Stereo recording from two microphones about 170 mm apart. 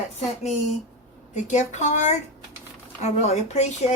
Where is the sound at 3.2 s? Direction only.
40° left (ahead or behind).